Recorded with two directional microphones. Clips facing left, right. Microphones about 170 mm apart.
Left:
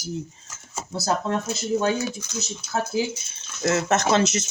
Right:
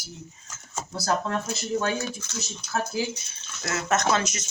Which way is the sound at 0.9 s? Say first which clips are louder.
Left 2 dB; 20° left (ahead or behind).